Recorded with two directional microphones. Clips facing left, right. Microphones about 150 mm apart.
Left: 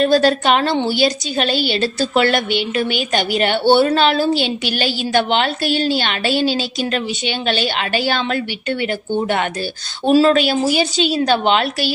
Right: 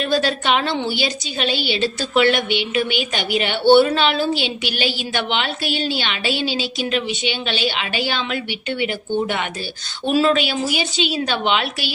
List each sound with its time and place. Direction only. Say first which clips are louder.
0.0 s a woman's voice: left 6 dB; 40° left (ahead or behind)